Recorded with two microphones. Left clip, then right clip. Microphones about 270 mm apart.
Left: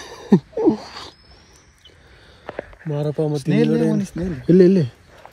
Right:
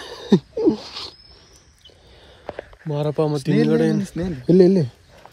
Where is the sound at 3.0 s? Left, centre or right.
Right.